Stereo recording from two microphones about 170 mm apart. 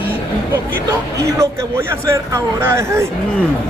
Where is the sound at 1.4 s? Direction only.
15° right (ahead or behind).